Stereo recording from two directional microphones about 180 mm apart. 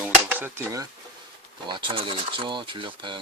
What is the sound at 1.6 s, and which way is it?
Speech, 25° right (ahead or behind).